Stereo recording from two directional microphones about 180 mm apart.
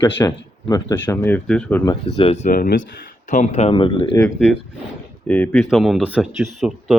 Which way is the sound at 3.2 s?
40° left (ahead or behind).